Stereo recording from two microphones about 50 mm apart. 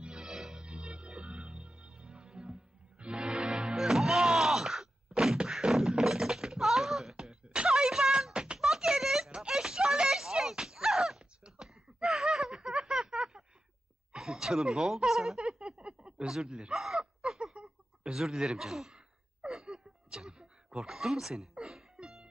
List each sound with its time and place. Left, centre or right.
0.0 s music: centre
5.5 s a sound: centre
9.3 s wail: centre
9.6 s a sound: centre
16.3 s snicker: centre
18.9 s gasp: centre
21.9 s music: centre